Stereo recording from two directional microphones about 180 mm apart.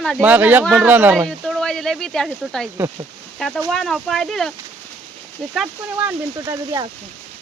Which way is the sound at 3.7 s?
Centre (ahead or behind).